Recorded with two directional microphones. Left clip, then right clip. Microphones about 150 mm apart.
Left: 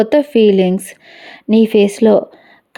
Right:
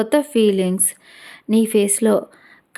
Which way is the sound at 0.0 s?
25° left (ahead or behind).